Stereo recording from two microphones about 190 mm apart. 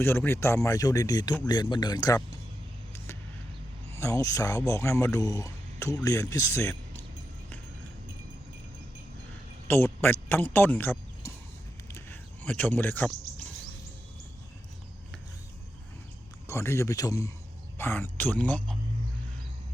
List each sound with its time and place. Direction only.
0.0 s a man's voice: 10° left (ahead or behind)
3.9 s a man's voice: 15° left (ahead or behind)
9.6 s speech: 10° left (ahead or behind)
11.9 s a sound: 10° left (ahead or behind)
16.5 s a man's voice: 15° left (ahead or behind)